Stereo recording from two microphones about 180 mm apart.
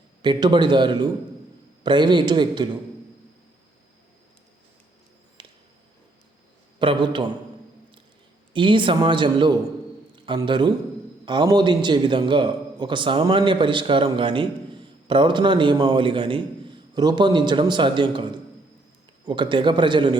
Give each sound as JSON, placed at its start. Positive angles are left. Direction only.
{"t": 0.2, "sound": "a man's voice", "side_deg": -25}
{"t": 5.4, "sound": "a sound", "side_deg": -25}
{"t": 6.7, "sound": "a man's voice", "side_deg": -25}
{"t": 8.5, "sound": "a man's voice", "side_deg": -30}